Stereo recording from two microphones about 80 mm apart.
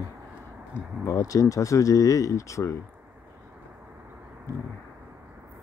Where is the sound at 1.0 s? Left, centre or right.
Left.